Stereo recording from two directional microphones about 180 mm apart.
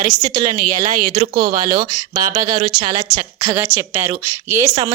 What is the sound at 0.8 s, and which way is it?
Speech, 35° right (ahead or behind).